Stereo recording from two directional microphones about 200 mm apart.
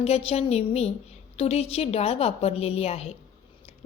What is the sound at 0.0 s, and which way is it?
A woman's voice, 30° left (ahead or behind).